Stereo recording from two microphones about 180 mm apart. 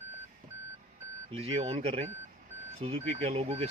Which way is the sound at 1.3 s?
35° right (ahead or behind).